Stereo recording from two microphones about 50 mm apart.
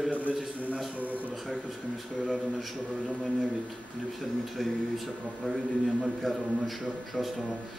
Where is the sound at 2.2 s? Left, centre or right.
Centre.